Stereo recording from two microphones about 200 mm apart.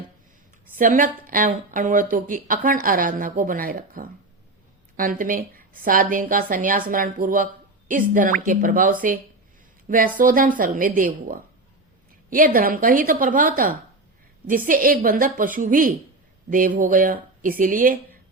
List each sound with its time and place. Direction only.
0.8 s speech: 40° right (ahead or behind)
10.2 s speech: 45° right (ahead or behind)